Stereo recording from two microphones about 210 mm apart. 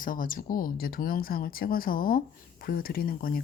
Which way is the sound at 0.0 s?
40° left (ahead or behind).